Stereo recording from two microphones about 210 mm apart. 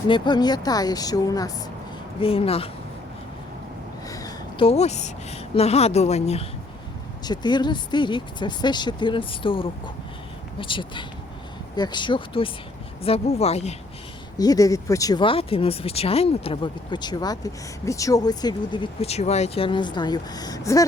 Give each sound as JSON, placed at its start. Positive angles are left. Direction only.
{"t": 0.1, "sound": "speech", "side_deg": 20}
{"t": 4.1, "sound": "a sound", "side_deg": 20}
{"t": 5.5, "sound": "a woman's voice", "side_deg": 30}
{"t": 14.3, "sound": "speech", "side_deg": 15}